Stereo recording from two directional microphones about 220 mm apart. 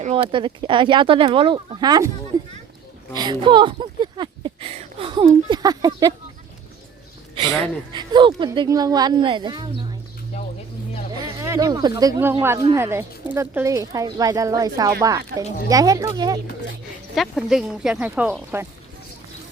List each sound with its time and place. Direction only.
0.0 s speech: 25° right (ahead or behind)
7.9 s speech: 20° right (ahead or behind)
11.2 s speech: 15° right (ahead or behind)
17.2 s speech: centre (ahead or behind)